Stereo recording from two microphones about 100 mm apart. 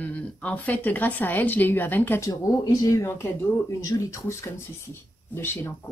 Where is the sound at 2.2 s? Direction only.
35° left (ahead or behind).